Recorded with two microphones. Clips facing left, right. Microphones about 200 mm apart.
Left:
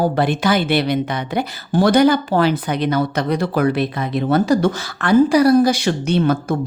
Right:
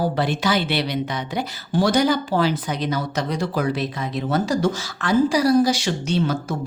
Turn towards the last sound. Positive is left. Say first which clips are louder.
# left 5 dB
turn(degrees=55)  # may be behind; listen again after turning